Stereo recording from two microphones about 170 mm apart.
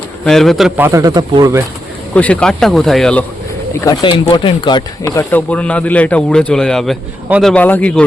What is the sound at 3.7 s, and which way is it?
Speech, 20° left (ahead or behind).